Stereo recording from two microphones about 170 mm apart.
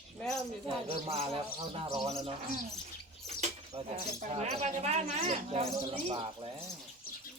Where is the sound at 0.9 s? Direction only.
35° right (ahead or behind).